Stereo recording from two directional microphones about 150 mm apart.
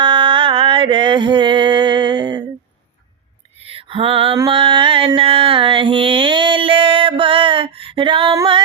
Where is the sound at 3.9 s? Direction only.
40° right (ahead or behind).